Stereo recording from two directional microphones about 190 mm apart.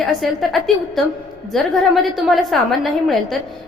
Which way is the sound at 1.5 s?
Centre (ahead or behind).